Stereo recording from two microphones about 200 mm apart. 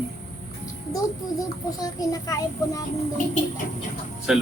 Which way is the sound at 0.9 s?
15° left (ahead or behind).